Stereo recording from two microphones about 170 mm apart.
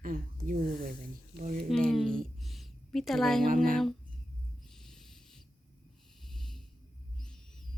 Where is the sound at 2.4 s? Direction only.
Centre (ahead or behind).